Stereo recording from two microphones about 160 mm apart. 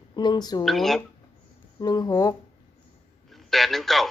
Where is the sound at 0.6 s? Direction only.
Centre (ahead or behind).